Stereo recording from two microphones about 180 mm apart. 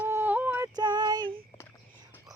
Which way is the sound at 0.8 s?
25° right (ahead or behind).